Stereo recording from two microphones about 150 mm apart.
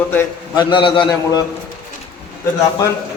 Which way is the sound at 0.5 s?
35° left (ahead or behind).